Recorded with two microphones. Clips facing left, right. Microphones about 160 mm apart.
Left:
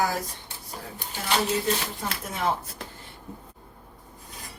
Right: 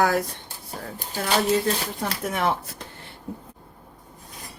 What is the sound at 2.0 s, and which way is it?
Speech, 60° right (ahead or behind).